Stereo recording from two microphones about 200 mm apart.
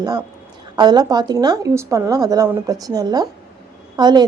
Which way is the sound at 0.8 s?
20° right (ahead or behind).